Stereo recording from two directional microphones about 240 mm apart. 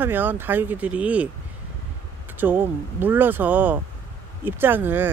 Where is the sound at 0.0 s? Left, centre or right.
Centre.